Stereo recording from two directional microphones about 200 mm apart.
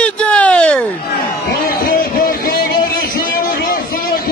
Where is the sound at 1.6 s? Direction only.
45° left (ahead or behind).